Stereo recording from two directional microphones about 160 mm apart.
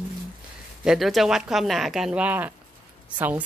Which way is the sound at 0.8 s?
Centre (ahead or behind).